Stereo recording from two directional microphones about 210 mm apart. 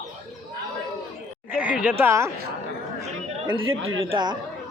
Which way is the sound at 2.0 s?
10° right (ahead or behind).